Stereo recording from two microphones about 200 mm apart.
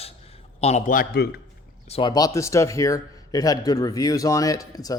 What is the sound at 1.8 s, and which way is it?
A man's voice, 25° left (ahead or behind).